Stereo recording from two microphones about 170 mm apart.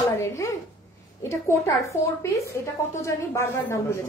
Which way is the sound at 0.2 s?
15° left (ahead or behind).